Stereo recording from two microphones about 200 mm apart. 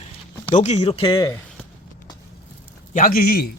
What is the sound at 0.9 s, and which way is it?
Speech, 25° left (ahead or behind).